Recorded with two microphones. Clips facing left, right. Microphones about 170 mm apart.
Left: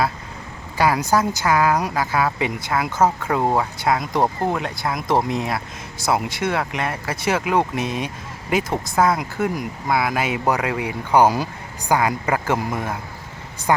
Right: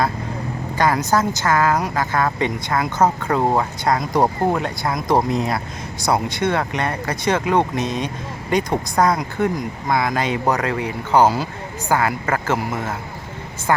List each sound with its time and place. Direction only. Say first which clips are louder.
0.8 s speech: even; 10° left (ahead or behind)